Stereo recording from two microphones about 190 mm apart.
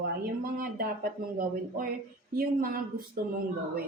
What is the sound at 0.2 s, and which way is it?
Speech, 50° right (ahead or behind).